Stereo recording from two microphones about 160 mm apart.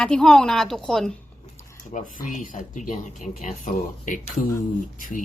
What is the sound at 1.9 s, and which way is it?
Speech, 55° left (ahead or behind).